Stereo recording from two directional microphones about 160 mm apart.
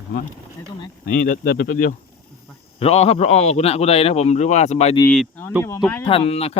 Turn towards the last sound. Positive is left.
turn(degrees=40)  # may be behind; listen again after turning